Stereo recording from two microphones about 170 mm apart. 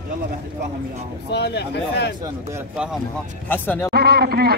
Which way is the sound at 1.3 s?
85° left.